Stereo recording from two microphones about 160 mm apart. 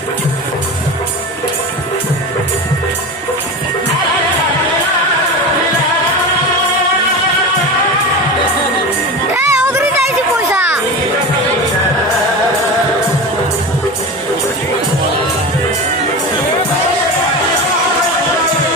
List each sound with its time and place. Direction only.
9.3 s music: 20° right (ahead or behind)